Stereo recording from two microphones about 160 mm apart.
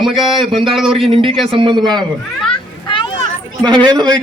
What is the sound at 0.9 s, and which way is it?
Speech, 35° right (ahead or behind).